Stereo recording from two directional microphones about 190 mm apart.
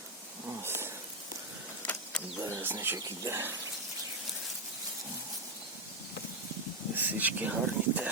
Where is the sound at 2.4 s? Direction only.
10° right (ahead or behind).